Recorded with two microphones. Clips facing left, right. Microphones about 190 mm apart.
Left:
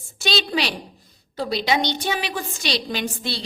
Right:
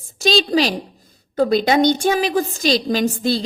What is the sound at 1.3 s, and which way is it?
A woman's voice, 50° right (ahead or behind).